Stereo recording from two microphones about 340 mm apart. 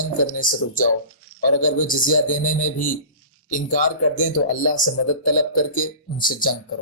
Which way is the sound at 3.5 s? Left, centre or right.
Left.